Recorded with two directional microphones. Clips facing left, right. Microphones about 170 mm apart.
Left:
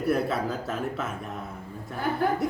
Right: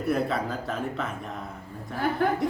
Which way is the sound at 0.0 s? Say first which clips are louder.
Left 1 dB; centre (ahead or behind).